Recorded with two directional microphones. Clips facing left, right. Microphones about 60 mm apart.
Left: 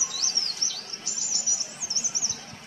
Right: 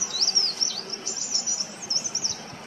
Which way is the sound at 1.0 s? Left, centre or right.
Right.